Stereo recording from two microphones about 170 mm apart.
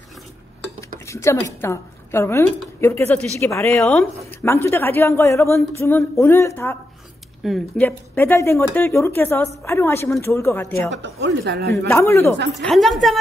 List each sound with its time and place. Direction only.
0.9 s a woman's voice: 15° left (ahead or behind)
10.9 s speech: 90° right
11.9 s a woman's voice: 15° left (ahead or behind)
12.6 s a woman's voice: centre (ahead or behind)